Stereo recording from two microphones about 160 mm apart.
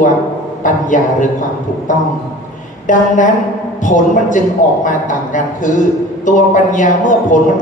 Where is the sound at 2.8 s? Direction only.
55° left (ahead or behind).